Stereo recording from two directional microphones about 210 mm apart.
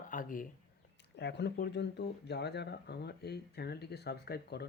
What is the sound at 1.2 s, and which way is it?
Speech, 55° left (ahead or behind).